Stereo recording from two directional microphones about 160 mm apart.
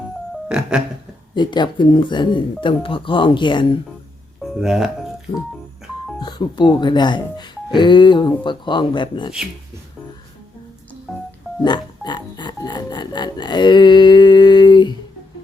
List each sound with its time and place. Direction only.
0.4 s music: 5° right (ahead or behind)
1.4 s speech: 30° left (ahead or behind)
4.4 s speech: centre (ahead or behind)
5.3 s music: 35° left (ahead or behind)
6.1 s speech: 30° left (ahead or behind)
11.6 s music: 30° left (ahead or behind)